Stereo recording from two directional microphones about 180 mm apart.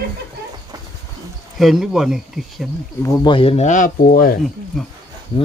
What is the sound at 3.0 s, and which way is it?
Speech, 20° left (ahead or behind).